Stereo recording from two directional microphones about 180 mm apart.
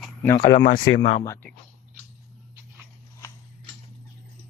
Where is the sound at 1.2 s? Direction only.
15° left (ahead or behind).